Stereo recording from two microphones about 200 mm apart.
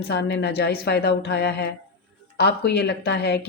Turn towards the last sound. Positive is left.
turn(degrees=55)  # may be behind; listen again after turning